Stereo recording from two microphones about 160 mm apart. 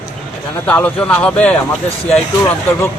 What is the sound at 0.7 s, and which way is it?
Speech, 10° left (ahead or behind).